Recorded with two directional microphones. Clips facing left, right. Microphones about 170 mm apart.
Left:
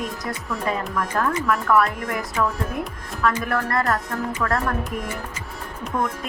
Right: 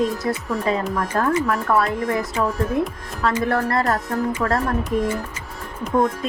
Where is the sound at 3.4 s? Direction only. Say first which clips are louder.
Right 3 dB; 30° right (ahead or behind).